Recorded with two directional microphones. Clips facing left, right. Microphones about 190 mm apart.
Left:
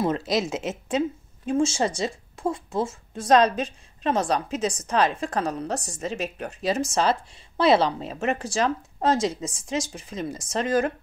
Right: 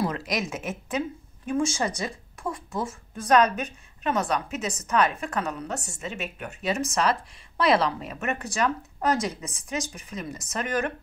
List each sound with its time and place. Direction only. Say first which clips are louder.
0.0 s speech: left 4 dB; 25° left (ahead or behind)